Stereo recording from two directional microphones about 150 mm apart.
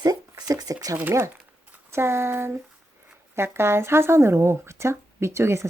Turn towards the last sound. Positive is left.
turn(degrees=-20)  # may be behind; listen again after turning